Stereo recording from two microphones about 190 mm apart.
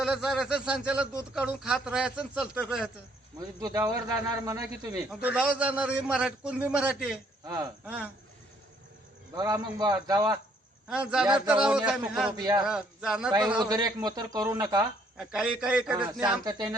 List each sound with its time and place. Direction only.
0.0 s a man's voice: centre (ahead or behind)
3.6 s speech: 20° right (ahead or behind)
5.2 s a man's voice: 5° right (ahead or behind)
7.4 s speech: 20° right (ahead or behind)
9.3 s a man's voice: 20° right (ahead or behind)
10.8 s a man's voice: 5° right (ahead or behind)
12.4 s a man's voice: 20° right (ahead or behind)
12.6 s a man's voice: 5° right (ahead or behind)
13.6 s a man's voice: 20° right (ahead or behind)
15.2 s a man's voice: 5° right (ahead or behind)
16.4 s a man's voice: 20° right (ahead or behind)